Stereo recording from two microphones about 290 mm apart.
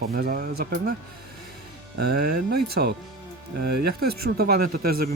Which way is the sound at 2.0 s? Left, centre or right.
Right.